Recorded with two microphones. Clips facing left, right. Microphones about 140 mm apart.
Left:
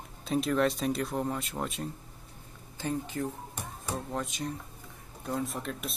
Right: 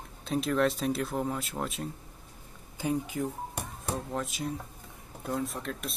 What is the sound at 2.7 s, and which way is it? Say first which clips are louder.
Speech: right 2 dB; 10° right (ahead or behind).